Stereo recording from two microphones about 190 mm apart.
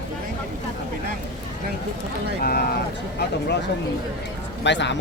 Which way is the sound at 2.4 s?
55° left (ahead or behind).